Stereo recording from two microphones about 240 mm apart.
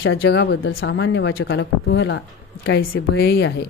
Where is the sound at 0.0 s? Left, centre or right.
Left.